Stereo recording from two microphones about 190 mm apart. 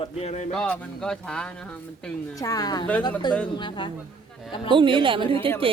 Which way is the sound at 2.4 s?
20° left (ahead or behind).